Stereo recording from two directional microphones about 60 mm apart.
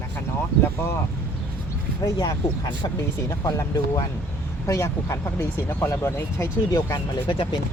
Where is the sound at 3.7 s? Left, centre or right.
Left.